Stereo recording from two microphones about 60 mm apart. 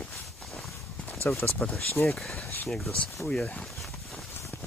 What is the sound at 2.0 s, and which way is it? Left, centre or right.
Speech, centre.